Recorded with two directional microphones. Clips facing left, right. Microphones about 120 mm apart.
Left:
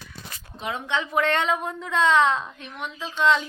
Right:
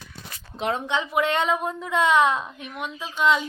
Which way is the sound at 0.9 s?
15° right (ahead or behind).